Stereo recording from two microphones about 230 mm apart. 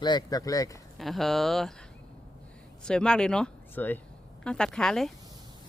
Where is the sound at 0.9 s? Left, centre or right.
Centre.